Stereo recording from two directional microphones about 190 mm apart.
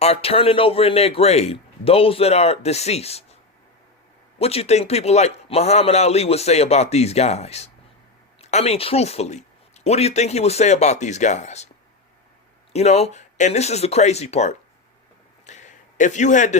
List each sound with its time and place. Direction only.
0.0 s speech: 30° left (ahead or behind)
4.4 s speech: 30° left (ahead or behind)
12.7 s speech: 35° left (ahead or behind)
15.4 s a sound: 40° left (ahead or behind)